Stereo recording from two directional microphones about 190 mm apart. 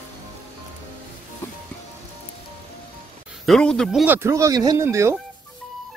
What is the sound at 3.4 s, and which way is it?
Speech, 5° left (ahead or behind).